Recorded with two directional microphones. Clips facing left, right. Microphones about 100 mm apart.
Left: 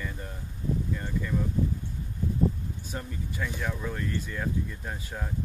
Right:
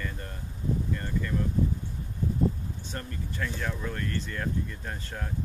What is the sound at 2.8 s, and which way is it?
Speech, 10° left (ahead or behind).